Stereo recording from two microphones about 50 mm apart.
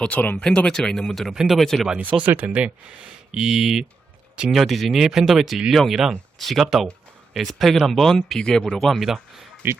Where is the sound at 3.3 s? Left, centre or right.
Centre.